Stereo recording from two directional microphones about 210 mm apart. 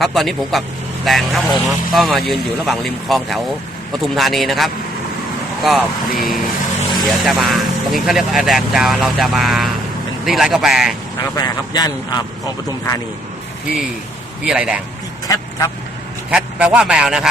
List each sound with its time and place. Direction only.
0.0 s speech: centre (ahead or behind)
6.7 s vehicle: 20° left (ahead or behind)
7.2 s speech: centre (ahead or behind)
11.2 s speech: 20° left (ahead or behind)
14.4 s speech: 5° right (ahead or behind)
15.3 s speech: 15° left (ahead or behind)
16.3 s speech: 5° right (ahead or behind)